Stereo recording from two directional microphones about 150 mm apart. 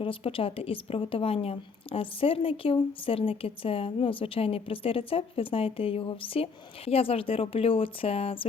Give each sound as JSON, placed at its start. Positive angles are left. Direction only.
{"t": 0.0, "sound": "a woman's voice", "side_deg": 40}